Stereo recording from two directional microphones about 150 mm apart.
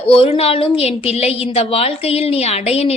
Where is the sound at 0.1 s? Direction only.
40° left (ahead or behind).